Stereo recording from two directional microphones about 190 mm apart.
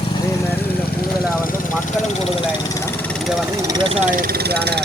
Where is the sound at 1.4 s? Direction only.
45° left (ahead or behind).